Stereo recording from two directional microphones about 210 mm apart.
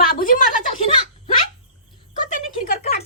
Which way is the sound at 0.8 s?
30° left (ahead or behind).